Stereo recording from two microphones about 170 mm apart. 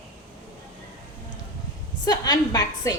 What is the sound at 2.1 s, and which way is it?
Speech, 20° left (ahead or behind).